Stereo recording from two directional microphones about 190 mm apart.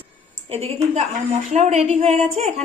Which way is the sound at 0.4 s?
30° right (ahead or behind).